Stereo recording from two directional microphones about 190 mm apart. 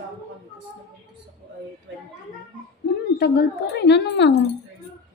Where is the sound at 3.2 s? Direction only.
60° left (ahead or behind).